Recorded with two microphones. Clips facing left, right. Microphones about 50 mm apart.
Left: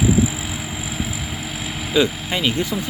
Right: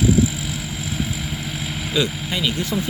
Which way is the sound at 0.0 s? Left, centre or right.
Centre.